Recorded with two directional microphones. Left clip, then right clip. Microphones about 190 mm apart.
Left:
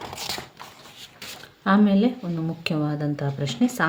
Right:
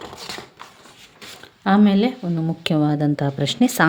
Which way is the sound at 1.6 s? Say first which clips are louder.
Right 3 dB; 40° right (ahead or behind).